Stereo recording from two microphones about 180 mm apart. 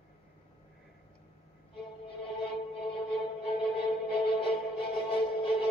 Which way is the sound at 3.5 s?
30° left (ahead or behind).